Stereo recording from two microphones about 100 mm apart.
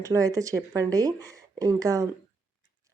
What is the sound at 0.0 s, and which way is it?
A woman's voice, 35° right (ahead or behind).